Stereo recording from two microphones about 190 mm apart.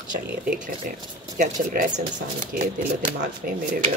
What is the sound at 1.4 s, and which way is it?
Speech, 40° right (ahead or behind).